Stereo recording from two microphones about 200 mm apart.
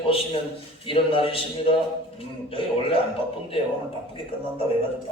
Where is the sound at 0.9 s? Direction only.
25° left (ahead or behind).